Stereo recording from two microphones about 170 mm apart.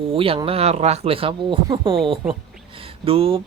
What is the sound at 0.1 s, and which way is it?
Speech, 30° right (ahead or behind).